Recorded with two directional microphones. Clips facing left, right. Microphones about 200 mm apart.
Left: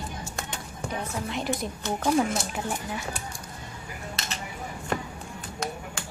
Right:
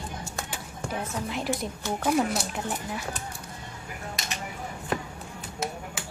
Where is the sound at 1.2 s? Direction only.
Centre (ahead or behind).